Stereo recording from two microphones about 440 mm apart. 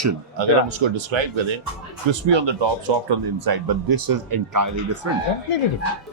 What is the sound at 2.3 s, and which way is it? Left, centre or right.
Speech, right.